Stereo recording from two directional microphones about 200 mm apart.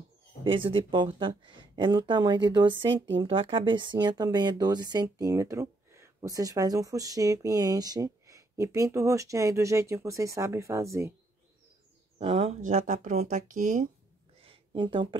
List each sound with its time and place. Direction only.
0.4 s speech: 25° right (ahead or behind)
12.2 s speech: 30° right (ahead or behind)
14.4 s a sound: 30° right (ahead or behind)